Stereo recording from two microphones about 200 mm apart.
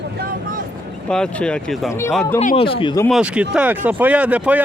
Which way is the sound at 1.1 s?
5° left (ahead or behind).